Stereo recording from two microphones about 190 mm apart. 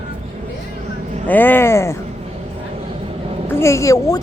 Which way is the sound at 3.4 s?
15° left (ahead or behind).